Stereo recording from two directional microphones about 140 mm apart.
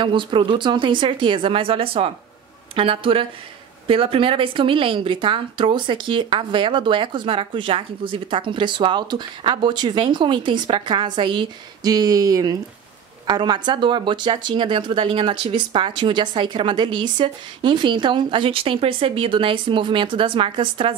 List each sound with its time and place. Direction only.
0.0 s speech: 35° right (ahead or behind)